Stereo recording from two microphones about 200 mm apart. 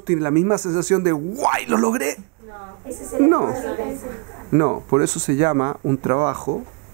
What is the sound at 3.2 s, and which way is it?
A woman's voice, 25° right (ahead or behind).